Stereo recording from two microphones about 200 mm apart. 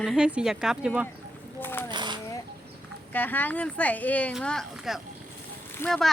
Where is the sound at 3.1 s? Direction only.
10° left (ahead or behind).